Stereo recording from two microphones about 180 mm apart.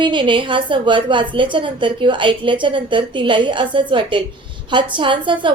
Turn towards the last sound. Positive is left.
turn(degrees=-25)  # may be behind; listen again after turning